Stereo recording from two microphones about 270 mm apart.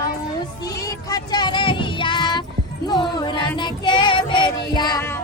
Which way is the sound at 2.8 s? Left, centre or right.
Centre.